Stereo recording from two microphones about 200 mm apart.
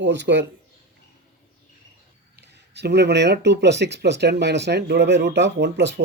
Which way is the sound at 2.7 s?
55° right (ahead or behind).